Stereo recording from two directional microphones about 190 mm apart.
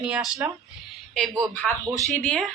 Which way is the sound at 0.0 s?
5° right (ahead or behind).